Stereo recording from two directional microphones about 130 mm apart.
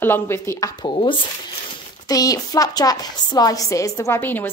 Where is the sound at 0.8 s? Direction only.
40° left (ahead or behind).